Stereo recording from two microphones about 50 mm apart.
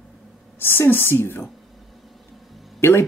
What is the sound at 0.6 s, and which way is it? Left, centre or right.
Speech, left.